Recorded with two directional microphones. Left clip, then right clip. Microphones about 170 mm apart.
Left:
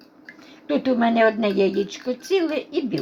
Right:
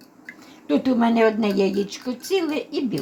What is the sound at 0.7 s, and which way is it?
Speech, 25° left (ahead or behind).